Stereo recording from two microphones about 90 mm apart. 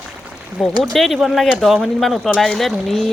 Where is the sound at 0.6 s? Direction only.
5° right (ahead or behind).